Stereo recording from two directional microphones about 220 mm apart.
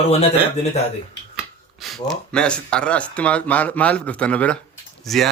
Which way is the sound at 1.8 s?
Centre (ahead or behind).